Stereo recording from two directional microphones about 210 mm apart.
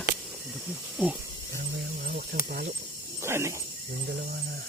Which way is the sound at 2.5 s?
45° right (ahead or behind).